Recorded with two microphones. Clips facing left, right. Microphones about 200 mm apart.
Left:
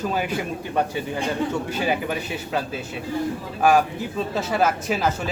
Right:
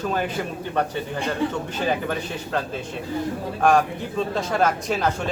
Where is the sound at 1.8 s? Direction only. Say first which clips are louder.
Right 2 dB; 10° left (ahead or behind).